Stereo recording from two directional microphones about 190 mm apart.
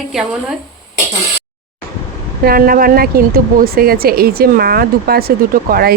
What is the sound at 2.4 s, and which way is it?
Speech, 50° right (ahead or behind).